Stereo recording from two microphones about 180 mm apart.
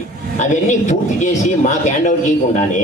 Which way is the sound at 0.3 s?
45° left (ahead or behind).